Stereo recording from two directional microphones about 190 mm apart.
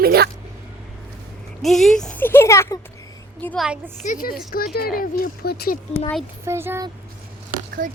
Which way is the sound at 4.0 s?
45° left (ahead or behind).